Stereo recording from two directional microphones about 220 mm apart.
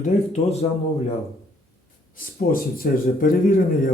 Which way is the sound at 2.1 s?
40° left (ahead or behind).